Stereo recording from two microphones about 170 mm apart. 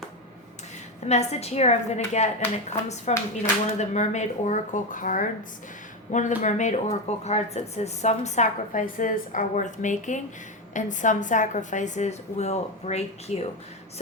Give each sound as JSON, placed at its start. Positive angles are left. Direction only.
{"t": 1.0, "sound": "speech", "side_deg": 40}